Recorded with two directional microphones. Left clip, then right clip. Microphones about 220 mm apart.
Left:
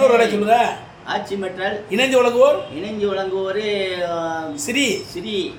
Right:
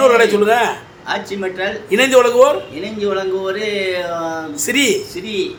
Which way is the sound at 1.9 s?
15° right (ahead or behind).